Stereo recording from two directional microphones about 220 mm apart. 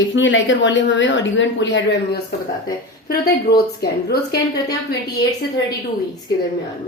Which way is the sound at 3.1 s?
45° left (ahead or behind).